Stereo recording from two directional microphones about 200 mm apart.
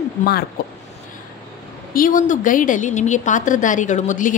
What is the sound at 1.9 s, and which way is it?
A woman's voice, 40° left (ahead or behind).